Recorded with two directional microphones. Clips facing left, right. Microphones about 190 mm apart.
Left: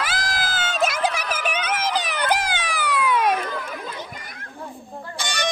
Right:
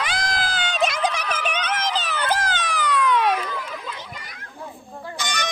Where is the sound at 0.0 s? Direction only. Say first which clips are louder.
Right 1 dB; 5° left (ahead or behind).